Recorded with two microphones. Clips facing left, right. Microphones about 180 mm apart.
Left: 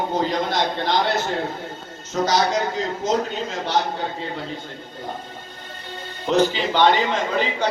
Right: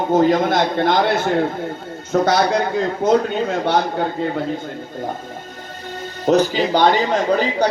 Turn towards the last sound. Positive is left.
turn(degrees=-40)  # may be behind; listen again after turning